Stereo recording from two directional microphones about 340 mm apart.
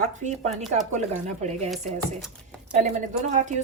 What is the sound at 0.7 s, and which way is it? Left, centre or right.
Speech, right.